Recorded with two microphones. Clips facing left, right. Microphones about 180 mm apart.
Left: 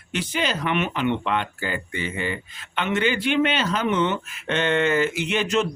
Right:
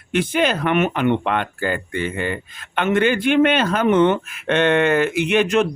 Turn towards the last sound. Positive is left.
turn(degrees=-60)  # may be behind; listen again after turning